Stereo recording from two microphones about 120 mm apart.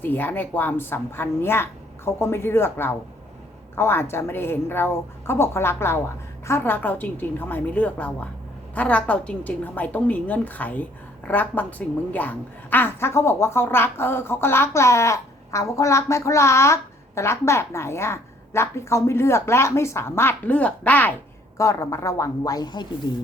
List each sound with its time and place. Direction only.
0.0 s a woman's voice: 15° left (ahead or behind)
21.6 s a woman's voice: 25° left (ahead or behind)